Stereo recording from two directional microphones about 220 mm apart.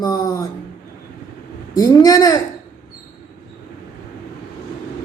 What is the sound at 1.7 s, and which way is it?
Speech, 15° left (ahead or behind).